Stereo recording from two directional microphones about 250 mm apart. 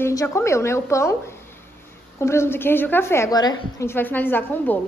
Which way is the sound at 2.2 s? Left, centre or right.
Centre.